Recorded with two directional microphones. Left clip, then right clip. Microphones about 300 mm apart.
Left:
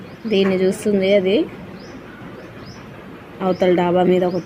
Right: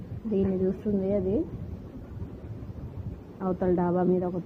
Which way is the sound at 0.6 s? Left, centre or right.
Left.